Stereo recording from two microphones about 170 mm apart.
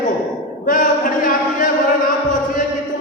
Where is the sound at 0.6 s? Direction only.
55° left (ahead or behind).